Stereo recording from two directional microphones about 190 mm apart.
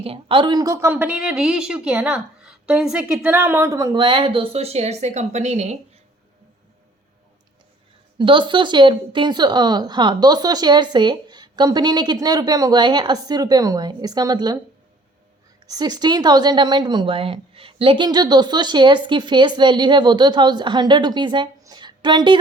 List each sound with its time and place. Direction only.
0.0 s a woman's voice: 30° right (ahead or behind)
8.2 s a woman's voice: 25° right (ahead or behind)
15.6 s a woman's voice: 20° right (ahead or behind)